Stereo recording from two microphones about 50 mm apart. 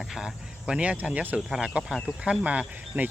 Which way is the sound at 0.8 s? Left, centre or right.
Right.